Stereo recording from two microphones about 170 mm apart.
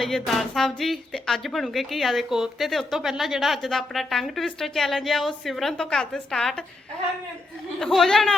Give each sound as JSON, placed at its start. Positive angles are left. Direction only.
{"t": 0.0, "sound": "speech", "side_deg": 0}
{"t": 7.8, "sound": "speech", "side_deg": 0}